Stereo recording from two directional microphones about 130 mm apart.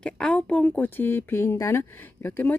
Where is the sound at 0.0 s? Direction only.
5° left (ahead or behind).